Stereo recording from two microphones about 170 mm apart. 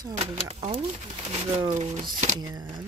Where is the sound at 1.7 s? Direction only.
40° right (ahead or behind).